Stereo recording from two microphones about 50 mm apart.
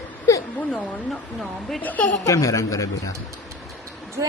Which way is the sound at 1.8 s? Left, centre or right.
Left.